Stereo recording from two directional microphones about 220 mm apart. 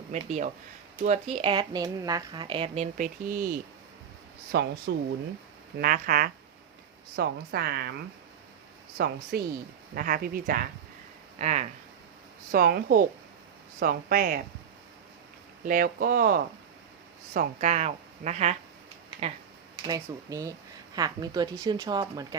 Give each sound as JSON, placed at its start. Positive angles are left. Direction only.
{"t": 0.1, "sound": "a woman's voice", "side_deg": -30}
{"t": 5.8, "sound": "a woman's voice", "side_deg": -40}
{"t": 9.0, "sound": "a woman's voice", "side_deg": -45}
{"t": 12.5, "sound": "a woman's voice", "side_deg": -40}
{"t": 15.6, "sound": "a woman's voice", "side_deg": -40}
{"t": 19.9, "sound": "a woman's voice", "side_deg": -15}